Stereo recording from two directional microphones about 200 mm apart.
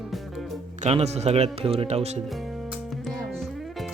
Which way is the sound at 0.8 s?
35° right (ahead or behind).